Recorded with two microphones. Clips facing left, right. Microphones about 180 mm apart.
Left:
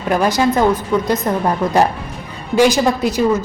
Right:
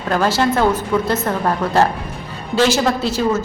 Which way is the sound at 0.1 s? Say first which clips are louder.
Left 2 dB; 15° left (ahead or behind).